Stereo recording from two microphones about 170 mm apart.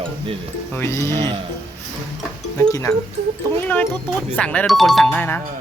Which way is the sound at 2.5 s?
15° left (ahead or behind).